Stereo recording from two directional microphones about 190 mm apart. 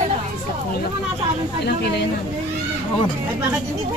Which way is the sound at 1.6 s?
60° left (ahead or behind).